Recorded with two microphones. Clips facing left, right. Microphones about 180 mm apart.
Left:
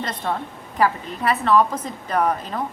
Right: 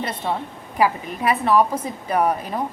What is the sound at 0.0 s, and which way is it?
A woman's voice, 10° right (ahead or behind).